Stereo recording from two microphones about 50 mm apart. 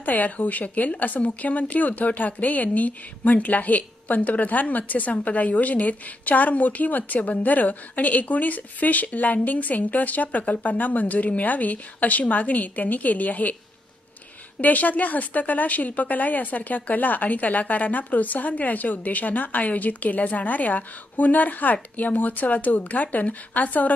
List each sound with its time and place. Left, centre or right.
0.0 s a woman's voice: left
14.6 s a woman's voice: left